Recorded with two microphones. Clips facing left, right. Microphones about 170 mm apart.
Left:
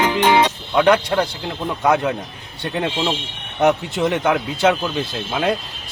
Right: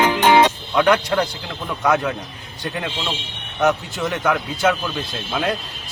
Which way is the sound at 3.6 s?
25° left (ahead or behind).